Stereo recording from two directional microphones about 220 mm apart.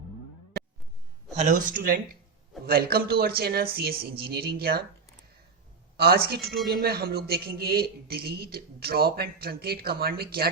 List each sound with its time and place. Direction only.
1.4 s speech: 35° right (ahead or behind)
6.0 s speech: 45° right (ahead or behind)